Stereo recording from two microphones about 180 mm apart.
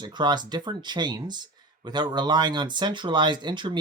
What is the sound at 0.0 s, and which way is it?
Speech, 25° right (ahead or behind).